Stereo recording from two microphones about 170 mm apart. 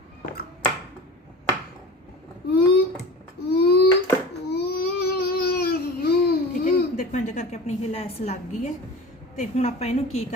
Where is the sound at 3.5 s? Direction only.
70° left (ahead or behind); by 8.7 s 40° left (ahead or behind).